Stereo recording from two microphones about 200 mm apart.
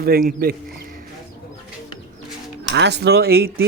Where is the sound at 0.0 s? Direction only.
45° right (ahead or behind).